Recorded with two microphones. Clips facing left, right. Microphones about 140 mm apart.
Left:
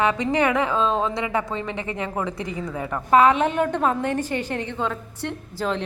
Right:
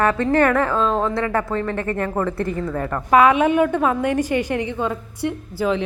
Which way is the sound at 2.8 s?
5° left (ahead or behind).